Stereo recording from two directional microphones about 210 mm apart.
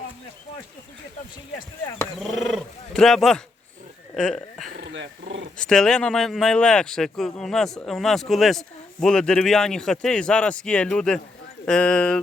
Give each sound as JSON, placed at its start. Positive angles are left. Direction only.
{"t": 2.1, "sound": "speech", "side_deg": 0}
{"t": 4.9, "sound": "speech", "side_deg": -60}
{"t": 5.5, "sound": "speech", "side_deg": 5}